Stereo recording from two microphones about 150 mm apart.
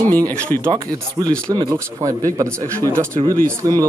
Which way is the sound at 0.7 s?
30° right (ahead or behind).